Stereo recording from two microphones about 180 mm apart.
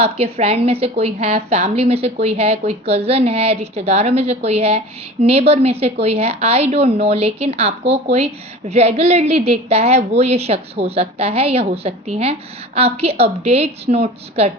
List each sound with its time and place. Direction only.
0.0 s a woman's voice: 35° right (ahead or behind)